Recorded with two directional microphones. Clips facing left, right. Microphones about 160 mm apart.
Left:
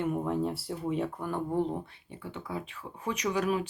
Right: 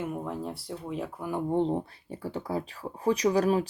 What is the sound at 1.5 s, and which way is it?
Speech, 25° right (ahead or behind).